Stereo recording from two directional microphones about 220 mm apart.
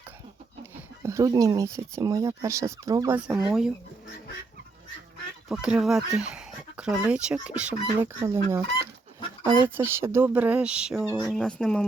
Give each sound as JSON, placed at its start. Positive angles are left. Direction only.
{"t": 1.0, "sound": "speech", "side_deg": -15}
{"t": 3.2, "sound": "speech", "side_deg": -5}
{"t": 5.5, "sound": "speech", "side_deg": 0}
{"t": 9.4, "sound": "speech", "side_deg": -25}
{"t": 9.6, "sound": "speech", "side_deg": -10}